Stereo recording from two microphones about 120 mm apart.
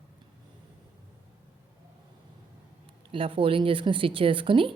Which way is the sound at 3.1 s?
50° right (ahead or behind).